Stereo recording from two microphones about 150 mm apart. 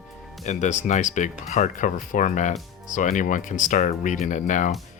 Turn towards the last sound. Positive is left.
turn(degrees=55)  # may be behind; listen again after turning